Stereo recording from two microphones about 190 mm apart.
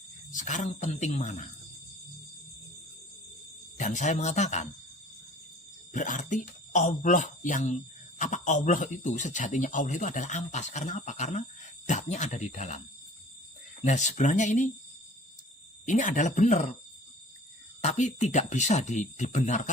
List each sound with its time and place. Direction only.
0.3 s speech: 40° left (ahead or behind)
3.8 s speech: 40° left (ahead or behind)
5.9 s speech: 40° left (ahead or behind)
13.8 s speech: 40° left (ahead or behind)
15.9 s speech: 40° left (ahead or behind)
17.8 s speech: 35° left (ahead or behind)